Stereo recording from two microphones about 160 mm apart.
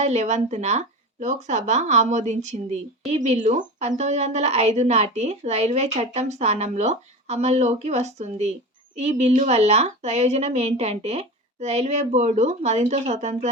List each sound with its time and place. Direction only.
0.0 s a woman's voice: 45° right (ahead or behind)